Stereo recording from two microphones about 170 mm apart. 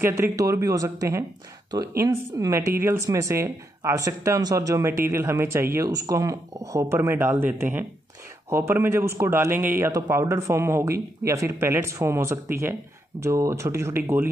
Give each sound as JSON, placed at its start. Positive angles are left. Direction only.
{"t": 0.0, "sound": "speech", "side_deg": -20}